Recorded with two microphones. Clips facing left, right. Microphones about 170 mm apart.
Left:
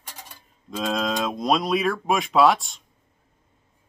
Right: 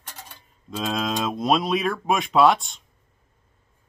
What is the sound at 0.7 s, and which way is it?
Speech, centre (ahead or behind).